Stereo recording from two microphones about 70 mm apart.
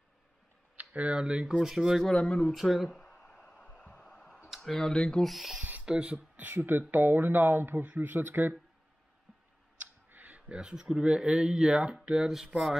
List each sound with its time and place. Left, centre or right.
0.7 s speech: centre
2.0 s speech: centre
2.5 s a sound: centre
4.6 s speech: centre
5.3 s speech: centre
5.7 s speech: centre
9.8 s speech: right; by 12.4 s centre